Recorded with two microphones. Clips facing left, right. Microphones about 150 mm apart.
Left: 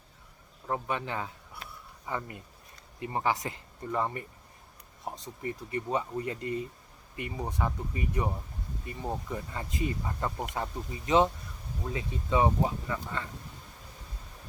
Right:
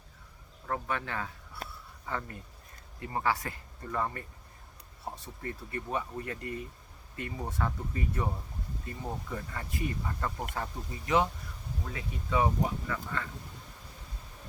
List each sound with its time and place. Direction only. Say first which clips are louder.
0.7 s speech: left 2 dB; 20° left (ahead or behind)
1.6 s a sound: right 5 dB; 40° right (ahead or behind)
2.0 s speech: left 1 dB; 15° left (ahead or behind)